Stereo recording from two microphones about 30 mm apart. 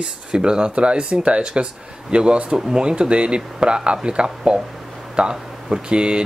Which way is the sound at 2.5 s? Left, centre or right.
Right.